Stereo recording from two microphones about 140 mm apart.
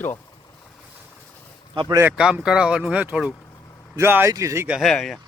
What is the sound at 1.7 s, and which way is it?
Speech, 30° right (ahead or behind).